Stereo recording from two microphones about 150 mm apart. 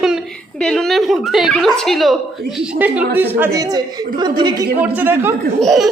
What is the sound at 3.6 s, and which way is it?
A woman's voice, 25° right (ahead or behind).